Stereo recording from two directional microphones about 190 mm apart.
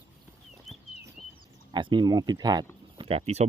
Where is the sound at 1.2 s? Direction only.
Centre (ahead or behind).